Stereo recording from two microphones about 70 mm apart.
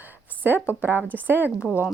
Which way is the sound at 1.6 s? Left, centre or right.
Left.